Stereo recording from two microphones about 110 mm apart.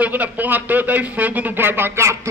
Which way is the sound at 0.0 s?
15° right (ahead or behind).